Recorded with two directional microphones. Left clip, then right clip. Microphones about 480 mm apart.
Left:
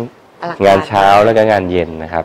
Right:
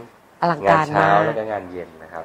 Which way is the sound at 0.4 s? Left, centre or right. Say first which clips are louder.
Right 3 dB; right.